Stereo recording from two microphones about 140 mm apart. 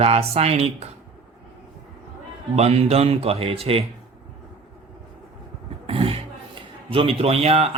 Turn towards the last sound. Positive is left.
turn(degrees=-45)  # may be behind; listen again after turning